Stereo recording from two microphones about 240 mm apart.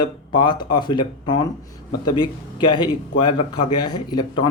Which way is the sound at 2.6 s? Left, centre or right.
Centre.